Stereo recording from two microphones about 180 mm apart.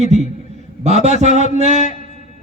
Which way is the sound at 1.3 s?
40° left (ahead or behind).